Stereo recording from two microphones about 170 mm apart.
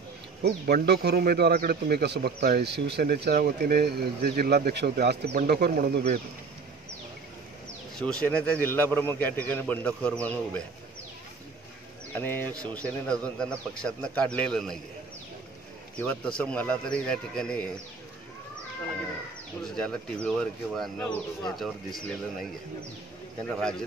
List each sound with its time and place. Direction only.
0.4 s speech: 70° right (ahead or behind)
5.3 s speech: 60° right (ahead or behind)
8.0 s a man's voice: 5° left (ahead or behind)
12.1 s a man's voice: 10° left (ahead or behind)
16.0 s a man's voice: 5° left (ahead or behind)
19.6 s a man's voice: 5° left (ahead or behind)
23.5 s a man's voice: 5° left (ahead or behind)